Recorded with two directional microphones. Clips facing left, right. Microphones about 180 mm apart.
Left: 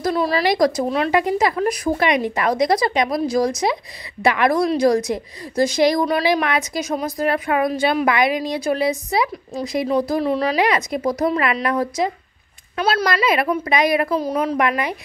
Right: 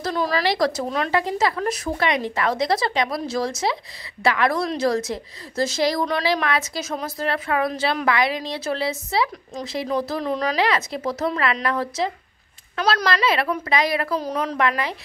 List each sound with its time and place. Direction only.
0.0 s a woman's voice: 10° left (ahead or behind)